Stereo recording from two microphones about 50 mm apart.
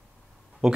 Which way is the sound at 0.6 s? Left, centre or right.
Centre.